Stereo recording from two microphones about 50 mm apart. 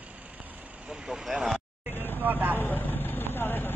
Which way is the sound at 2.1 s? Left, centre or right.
Right.